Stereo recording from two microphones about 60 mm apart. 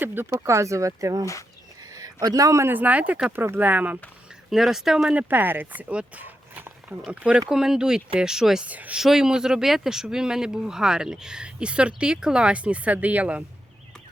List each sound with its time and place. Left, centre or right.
0.0 s speech: right
0.3 s speech: right
1.2 s speech: left
2.0 s speech: right
2.6 s speech: right
3.4 s speech: right
4.4 s speech: centre
5.1 s speech: right
5.9 s speech: right
6.2 s walk: right
7.1 s speech: right
8.6 s speech: right
9.0 s speech: centre